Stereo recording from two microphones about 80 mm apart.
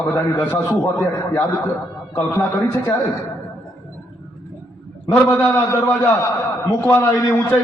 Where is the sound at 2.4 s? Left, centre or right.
Left.